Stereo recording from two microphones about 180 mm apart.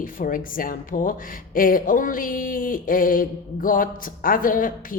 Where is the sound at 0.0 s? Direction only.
50° left (ahead or behind).